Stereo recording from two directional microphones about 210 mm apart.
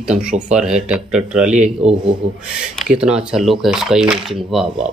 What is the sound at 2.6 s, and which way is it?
Speech, centre (ahead or behind).